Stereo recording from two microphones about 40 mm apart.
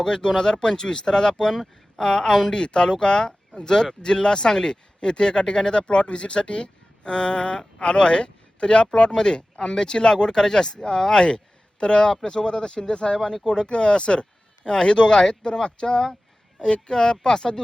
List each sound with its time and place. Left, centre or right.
0.0 s speech: centre